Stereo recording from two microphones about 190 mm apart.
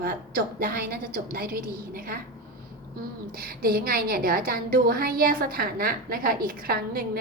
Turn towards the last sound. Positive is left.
turn(degrees=-50)  # may be behind; listen again after turning